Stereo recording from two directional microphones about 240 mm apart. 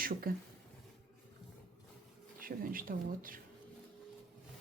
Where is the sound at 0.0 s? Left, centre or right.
Right.